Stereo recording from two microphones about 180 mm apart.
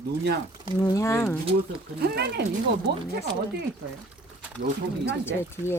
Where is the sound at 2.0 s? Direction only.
65° right (ahead or behind).